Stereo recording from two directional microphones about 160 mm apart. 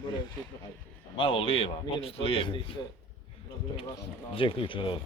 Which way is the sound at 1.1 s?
30° left (ahead or behind).